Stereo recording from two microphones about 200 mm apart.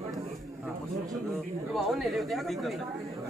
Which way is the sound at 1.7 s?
Centre (ahead or behind).